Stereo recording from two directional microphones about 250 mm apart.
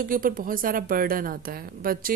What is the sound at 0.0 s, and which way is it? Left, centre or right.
A woman's voice, right.